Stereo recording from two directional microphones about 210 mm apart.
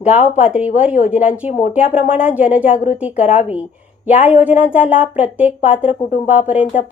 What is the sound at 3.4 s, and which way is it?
Speech, 5° right (ahead or behind).